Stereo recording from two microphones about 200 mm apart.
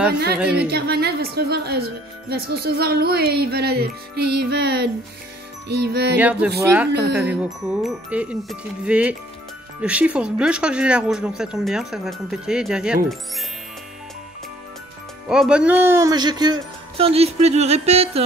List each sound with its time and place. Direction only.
0.4 s speech: 5° right (ahead or behind)
0.7 s speech: 55° right (ahead or behind)
5.7 s music: 55° right (ahead or behind)
6.1 s speech: 5° right (ahead or behind)
6.9 s music: 55° right (ahead or behind)
7.2 s speech: 5° right (ahead or behind)
15.2 s speech: 5° right (ahead or behind); by 18.2 s 30° right (ahead or behind)